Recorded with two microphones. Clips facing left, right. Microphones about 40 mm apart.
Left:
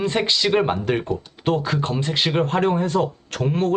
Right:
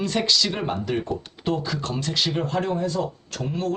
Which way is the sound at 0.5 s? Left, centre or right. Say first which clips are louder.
Left 6 dB; left.